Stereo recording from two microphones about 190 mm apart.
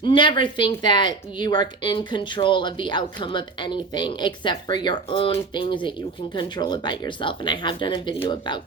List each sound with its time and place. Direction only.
0.0 s speech: 25° left (ahead or behind)